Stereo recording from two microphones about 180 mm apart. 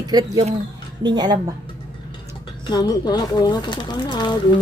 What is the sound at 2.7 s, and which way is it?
Speech, 25° left (ahead or behind).